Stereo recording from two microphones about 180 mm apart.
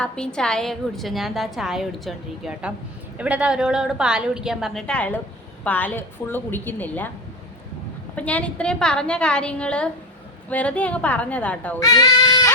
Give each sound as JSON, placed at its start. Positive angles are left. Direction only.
{"t": 0.0, "sound": "a woman's voice", "side_deg": 5}
{"t": 8.1, "sound": "a woman's voice", "side_deg": 10}
{"t": 11.8, "sound": "a sound", "side_deg": 20}